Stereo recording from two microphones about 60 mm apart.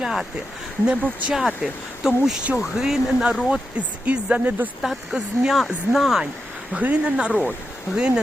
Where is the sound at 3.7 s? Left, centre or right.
Right.